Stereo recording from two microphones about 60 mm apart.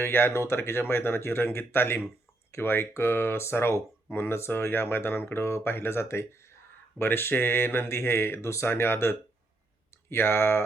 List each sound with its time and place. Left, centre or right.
0.0 s speech: left